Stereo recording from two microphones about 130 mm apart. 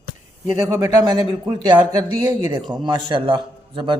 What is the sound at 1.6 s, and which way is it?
A man's voice, 35° right (ahead or behind).